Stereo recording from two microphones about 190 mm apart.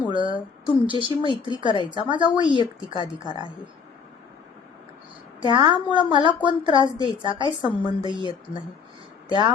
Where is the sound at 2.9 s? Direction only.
25° left (ahead or behind).